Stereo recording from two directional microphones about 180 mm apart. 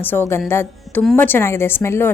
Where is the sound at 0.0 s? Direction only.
10° left (ahead or behind).